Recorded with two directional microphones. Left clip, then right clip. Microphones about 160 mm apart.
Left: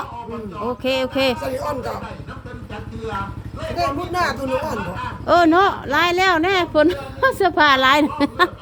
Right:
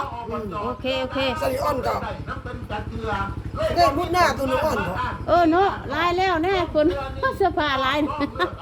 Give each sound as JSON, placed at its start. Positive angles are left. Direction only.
{"t": 0.8, "sound": "speech", "side_deg": 30}
{"t": 1.4, "sound": "speech", "side_deg": -10}
{"t": 3.8, "sound": "speech", "side_deg": -10}
{"t": 5.2, "sound": "speech", "side_deg": 40}